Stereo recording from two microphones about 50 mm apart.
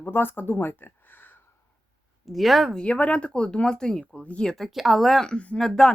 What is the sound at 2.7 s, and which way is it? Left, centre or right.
Speech, left.